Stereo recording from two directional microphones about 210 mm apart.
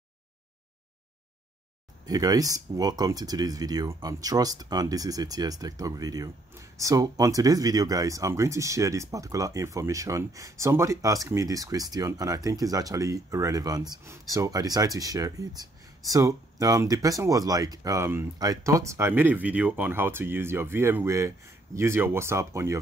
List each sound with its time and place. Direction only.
2.0 s speech: 15° right (ahead or behind)